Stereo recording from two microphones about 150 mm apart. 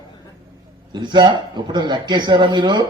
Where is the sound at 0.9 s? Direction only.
30° right (ahead or behind).